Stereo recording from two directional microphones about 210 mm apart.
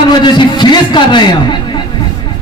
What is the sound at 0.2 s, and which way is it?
A man's voice, 20° left (ahead or behind).